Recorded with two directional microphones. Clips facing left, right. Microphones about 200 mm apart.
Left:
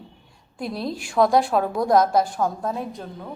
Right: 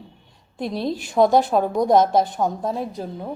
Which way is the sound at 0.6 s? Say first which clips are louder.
Right 3 dB; centre (ahead or behind).